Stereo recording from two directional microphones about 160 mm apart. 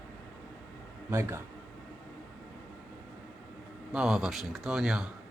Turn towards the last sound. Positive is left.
turn(degrees=-5)  # may be behind; listen again after turning